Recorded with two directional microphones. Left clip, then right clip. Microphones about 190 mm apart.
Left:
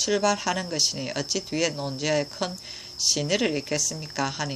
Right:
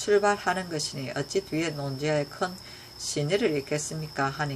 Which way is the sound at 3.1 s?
15° left (ahead or behind).